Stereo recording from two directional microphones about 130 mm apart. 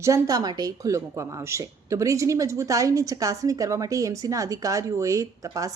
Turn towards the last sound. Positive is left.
turn(degrees=-25)  # may be behind; listen again after turning